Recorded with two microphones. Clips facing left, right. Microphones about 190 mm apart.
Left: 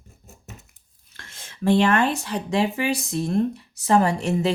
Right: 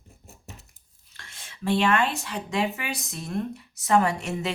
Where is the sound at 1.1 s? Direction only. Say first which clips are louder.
Left 3 dB; 45° left (ahead or behind).